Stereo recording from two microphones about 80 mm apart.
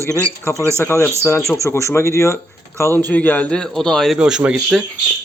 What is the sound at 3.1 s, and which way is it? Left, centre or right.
A man's voice, centre.